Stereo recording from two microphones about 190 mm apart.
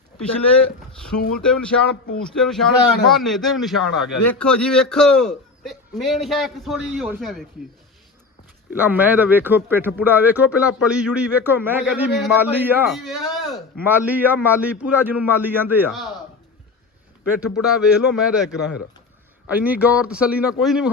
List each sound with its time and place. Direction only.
1.4 s a man's voice: 5° left (ahead or behind)
8.7 s speech: 10° right (ahead or behind)
12.9 s speech: centre (ahead or behind)
17.4 s a man's voice: 5° right (ahead or behind)